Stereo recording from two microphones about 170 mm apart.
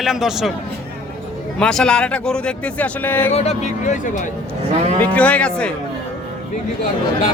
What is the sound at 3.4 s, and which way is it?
Speech, 40° left (ahead or behind).